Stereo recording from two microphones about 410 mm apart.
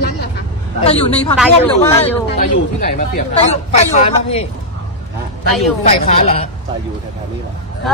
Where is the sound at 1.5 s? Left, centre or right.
Centre.